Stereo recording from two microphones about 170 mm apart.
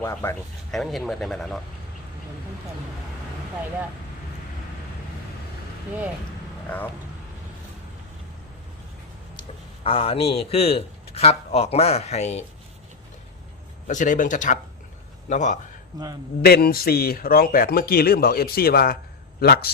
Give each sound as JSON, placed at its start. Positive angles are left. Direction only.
{"t": 0.0, "sound": "speech", "side_deg": 15}
{"t": 0.7, "sound": "speech", "side_deg": 0}
{"t": 6.7, "sound": "speech", "side_deg": 10}
{"t": 9.8, "sound": "a man's voice", "side_deg": 35}
{"t": 13.8, "sound": "speech", "side_deg": 50}
{"t": 16.4, "sound": "speech", "side_deg": 65}